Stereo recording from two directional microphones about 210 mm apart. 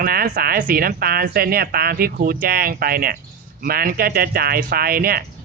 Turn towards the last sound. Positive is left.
turn(degrees=-45)  # may be behind; listen again after turning